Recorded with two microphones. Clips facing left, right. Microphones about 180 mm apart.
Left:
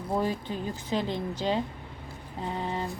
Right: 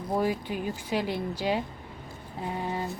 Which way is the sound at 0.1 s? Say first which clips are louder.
Right 1 dB; 10° right (ahead or behind).